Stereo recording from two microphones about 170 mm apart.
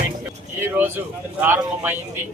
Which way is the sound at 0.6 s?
10° right (ahead or behind).